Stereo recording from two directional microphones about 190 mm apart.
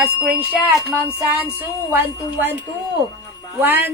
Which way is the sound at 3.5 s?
10° right (ahead or behind).